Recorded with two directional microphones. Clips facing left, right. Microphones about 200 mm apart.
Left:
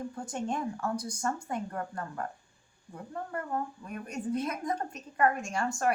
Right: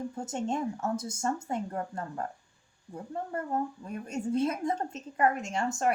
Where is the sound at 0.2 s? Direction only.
25° right (ahead or behind).